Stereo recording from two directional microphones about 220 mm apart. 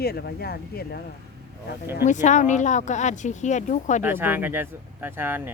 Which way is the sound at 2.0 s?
35° left (ahead or behind).